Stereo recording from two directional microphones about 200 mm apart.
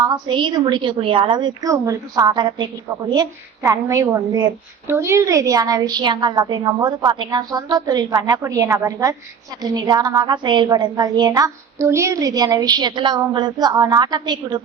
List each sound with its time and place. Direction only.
0.0 s a woman's voice: 20° right (ahead or behind)